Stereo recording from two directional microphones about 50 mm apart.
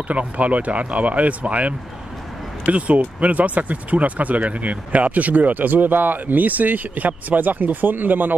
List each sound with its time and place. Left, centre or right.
0.1 s speech: right